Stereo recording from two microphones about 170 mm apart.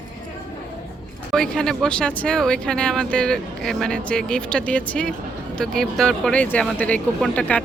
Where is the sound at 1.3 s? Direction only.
5° left (ahead or behind).